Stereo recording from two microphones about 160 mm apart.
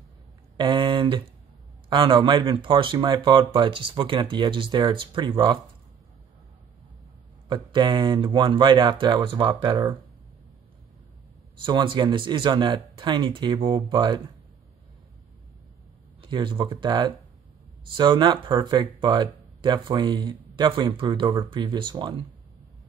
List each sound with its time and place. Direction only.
0.6 s a sound: 30° right (ahead or behind)
1.9 s speech: 30° right (ahead or behind)
7.4 s speech: 30° right (ahead or behind)
11.6 s speech: 30° right (ahead or behind)
16.2 s speech: 30° right (ahead or behind)